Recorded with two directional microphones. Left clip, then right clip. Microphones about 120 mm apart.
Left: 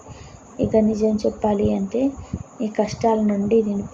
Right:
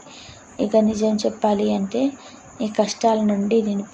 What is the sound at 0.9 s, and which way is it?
Speech, 15° right (ahead or behind).